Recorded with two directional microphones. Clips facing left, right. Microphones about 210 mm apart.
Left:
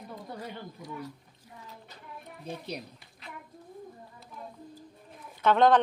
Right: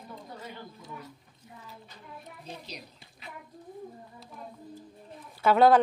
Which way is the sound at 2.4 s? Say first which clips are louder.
Left 7 dB; 60° left (ahead or behind).